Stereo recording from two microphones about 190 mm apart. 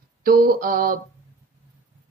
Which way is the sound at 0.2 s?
50° right (ahead or behind).